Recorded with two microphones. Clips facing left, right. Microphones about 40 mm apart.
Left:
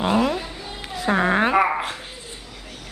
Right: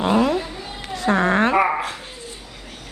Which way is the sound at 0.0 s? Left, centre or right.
Centre.